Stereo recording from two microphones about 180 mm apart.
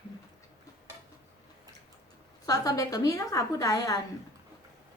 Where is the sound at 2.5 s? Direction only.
20° left (ahead or behind).